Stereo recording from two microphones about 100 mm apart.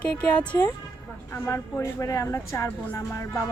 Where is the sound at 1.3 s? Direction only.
25° left (ahead or behind).